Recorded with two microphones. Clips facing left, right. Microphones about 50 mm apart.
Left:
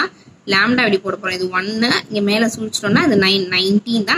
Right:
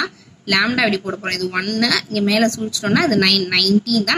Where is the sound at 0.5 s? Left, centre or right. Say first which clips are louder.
Left 3 dB; centre.